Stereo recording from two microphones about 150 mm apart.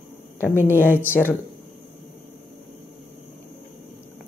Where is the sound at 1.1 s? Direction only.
15° left (ahead or behind).